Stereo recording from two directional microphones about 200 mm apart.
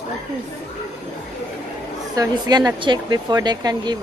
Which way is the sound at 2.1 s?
20° right (ahead or behind).